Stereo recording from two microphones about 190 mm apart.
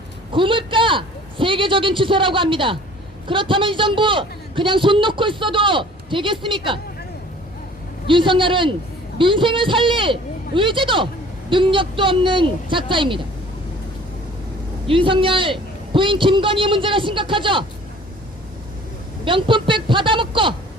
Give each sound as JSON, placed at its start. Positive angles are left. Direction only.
{"t": 0.3, "sound": "a man's voice", "side_deg": -25}
{"t": 8.0, "sound": "a man's voice", "side_deg": -25}
{"t": 14.8, "sound": "a man's voice", "side_deg": -25}
{"t": 19.2, "sound": "a man's voice", "side_deg": -25}